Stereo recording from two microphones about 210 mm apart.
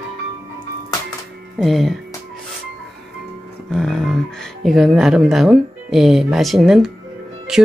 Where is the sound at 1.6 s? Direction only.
Centre (ahead or behind).